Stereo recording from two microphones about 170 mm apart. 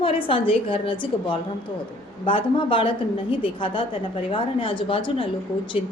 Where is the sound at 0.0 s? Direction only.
30° left (ahead or behind).